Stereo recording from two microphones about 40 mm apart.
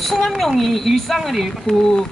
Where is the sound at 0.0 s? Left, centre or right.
Centre.